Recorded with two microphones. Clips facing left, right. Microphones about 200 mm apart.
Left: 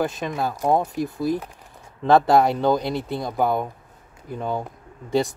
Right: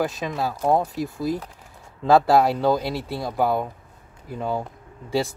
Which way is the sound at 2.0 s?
Centre (ahead or behind).